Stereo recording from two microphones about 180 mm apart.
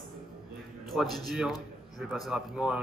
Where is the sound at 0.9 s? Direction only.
Centre (ahead or behind).